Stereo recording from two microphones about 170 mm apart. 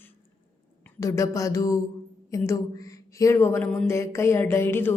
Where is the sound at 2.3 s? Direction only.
20° left (ahead or behind).